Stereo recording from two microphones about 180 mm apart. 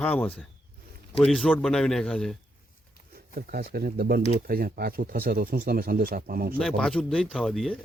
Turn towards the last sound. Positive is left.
turn(degrees=0)  # may be behind; listen again after turning